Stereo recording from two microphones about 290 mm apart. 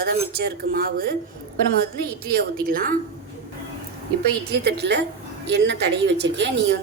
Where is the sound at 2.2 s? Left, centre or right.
Right.